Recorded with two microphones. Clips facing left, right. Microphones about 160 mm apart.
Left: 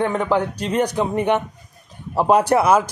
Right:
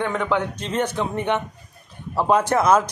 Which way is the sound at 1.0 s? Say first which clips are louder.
Left 4 dB; 10° left (ahead or behind).